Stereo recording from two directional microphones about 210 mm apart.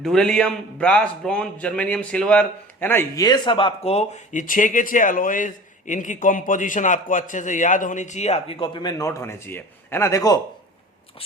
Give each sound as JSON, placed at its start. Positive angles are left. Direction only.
{"t": 0.0, "sound": "a man's voice", "side_deg": 5}